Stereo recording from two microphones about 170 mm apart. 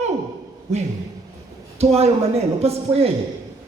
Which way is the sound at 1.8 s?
35° right (ahead or behind).